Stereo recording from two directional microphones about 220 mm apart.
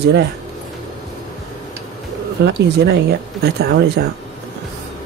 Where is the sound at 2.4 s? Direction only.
50° right (ahead or behind).